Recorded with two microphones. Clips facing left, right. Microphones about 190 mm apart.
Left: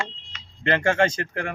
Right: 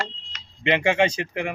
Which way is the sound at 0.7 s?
10° right (ahead or behind).